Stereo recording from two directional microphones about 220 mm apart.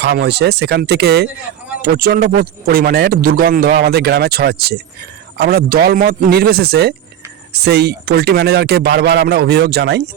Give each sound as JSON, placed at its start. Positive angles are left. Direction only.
{"t": 0.0, "sound": "a man's voice", "side_deg": -50}